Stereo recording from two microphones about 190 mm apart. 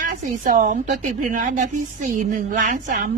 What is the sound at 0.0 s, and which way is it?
A woman's voice, 45° right (ahead or behind).